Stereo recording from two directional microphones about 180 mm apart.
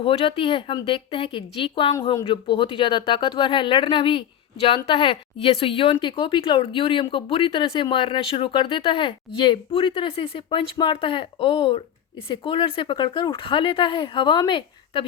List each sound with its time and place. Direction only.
0.0 s a woman's voice: 30° left (ahead or behind)